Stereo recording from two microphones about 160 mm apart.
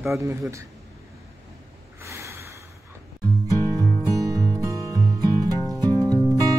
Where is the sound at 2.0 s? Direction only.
15° right (ahead or behind).